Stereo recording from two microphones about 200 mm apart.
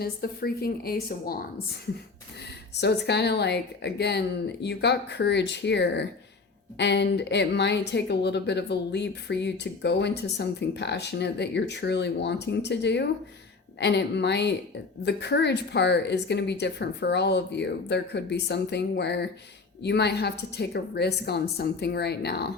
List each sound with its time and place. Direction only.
0.0 s a woman's voice: 50° left (ahead or behind)
2.8 s speech: 55° left (ahead or behind)